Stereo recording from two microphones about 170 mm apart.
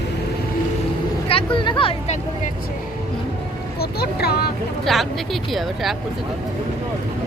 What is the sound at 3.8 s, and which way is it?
Speech, 70° left (ahead or behind).